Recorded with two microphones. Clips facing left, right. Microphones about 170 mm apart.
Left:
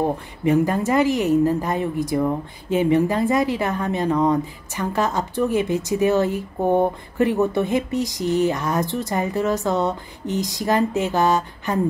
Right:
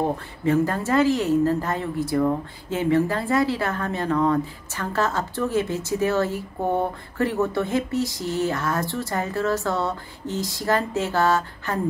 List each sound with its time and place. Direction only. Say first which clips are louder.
0.4 s a woman's voice: left 3 dB; 15° left (ahead or behind)